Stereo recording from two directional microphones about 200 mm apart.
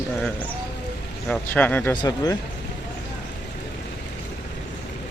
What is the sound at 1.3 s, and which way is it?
Speech, 10° left (ahead or behind).